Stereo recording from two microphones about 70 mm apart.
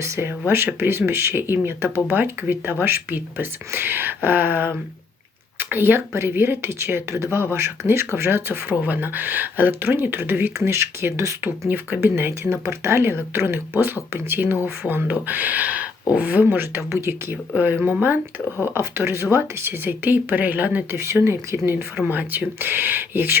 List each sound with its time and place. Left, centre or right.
0.0 s speech: right
5.7 s speech: right
18.7 s speech: right
20.9 s speech: right
22.0 s speech: right